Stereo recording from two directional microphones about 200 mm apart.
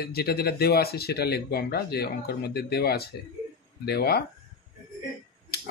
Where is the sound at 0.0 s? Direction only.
50° left (ahead or behind).